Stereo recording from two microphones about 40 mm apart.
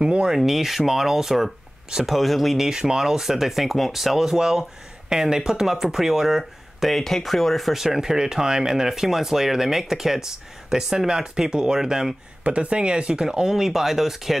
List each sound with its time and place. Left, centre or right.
0.4 s speech: centre
2.7 s speech: centre
6.9 s speech: centre
12.4 s speech: right; by 14.3 s centre